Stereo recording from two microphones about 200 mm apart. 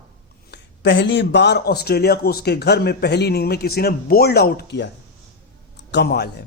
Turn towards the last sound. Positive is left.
turn(degrees=55)  # may be behind; listen again after turning